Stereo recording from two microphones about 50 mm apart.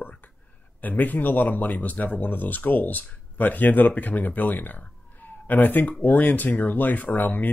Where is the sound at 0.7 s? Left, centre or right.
Left.